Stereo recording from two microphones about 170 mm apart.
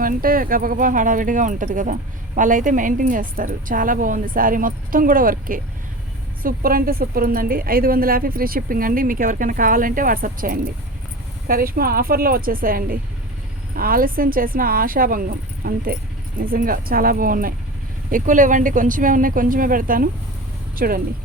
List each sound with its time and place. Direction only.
0.0 s a woman's voice: 55° right (ahead or behind)